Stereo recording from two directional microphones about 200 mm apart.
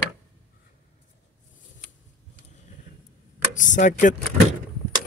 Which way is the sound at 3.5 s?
40° left (ahead or behind).